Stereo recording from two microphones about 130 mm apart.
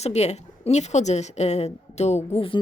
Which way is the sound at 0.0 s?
60° left (ahead or behind).